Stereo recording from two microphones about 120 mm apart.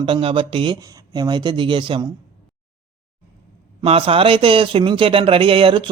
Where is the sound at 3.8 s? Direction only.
50° right (ahead or behind).